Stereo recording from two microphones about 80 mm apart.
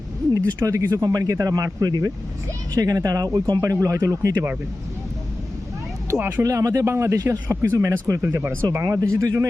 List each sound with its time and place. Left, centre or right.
0.3 s speech: right
3.6 s speech: right
6.1 s speech: right
6.4 s speech: right
6.8 s speech: right
8.3 s speech: right
8.7 s speech: right